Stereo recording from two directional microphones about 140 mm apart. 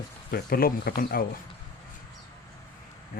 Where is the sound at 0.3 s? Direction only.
90° left.